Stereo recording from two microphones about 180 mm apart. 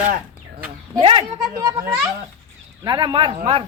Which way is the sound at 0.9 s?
30° right (ahead or behind).